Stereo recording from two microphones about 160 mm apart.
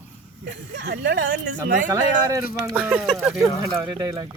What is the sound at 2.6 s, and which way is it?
Speech, 15° right (ahead or behind).